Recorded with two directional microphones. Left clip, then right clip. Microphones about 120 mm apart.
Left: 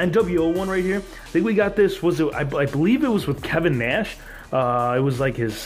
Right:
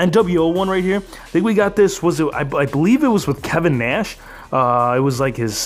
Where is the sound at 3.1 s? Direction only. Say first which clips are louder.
Right 4 dB; 45° right (ahead or behind); by 5.5 s 30° right (ahead or behind).